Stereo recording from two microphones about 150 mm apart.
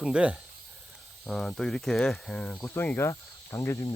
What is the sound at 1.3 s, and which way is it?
Speech, 5° left (ahead or behind).